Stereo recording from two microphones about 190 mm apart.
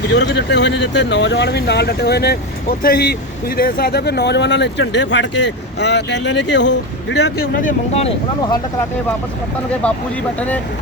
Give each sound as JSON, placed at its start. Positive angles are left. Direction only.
{"t": 0.1, "sound": "speech", "side_deg": 65}
{"t": 9.8, "sound": "speech", "side_deg": 10}